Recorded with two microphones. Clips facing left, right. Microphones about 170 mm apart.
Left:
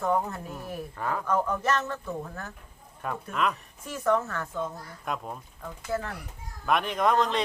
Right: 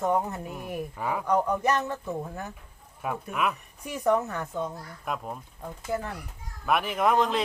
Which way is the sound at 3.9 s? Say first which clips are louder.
Right 1 dB; 15° right (ahead or behind).